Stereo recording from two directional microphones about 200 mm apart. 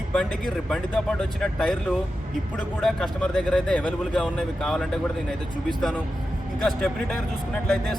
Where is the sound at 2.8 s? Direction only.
5° left (ahead or behind).